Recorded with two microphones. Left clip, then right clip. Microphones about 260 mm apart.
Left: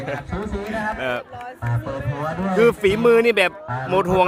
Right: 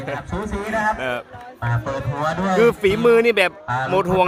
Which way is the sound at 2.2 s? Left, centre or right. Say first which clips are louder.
Right 5 dB; right.